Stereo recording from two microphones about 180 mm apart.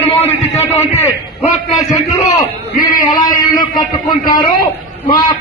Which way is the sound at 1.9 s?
20° left (ahead or behind).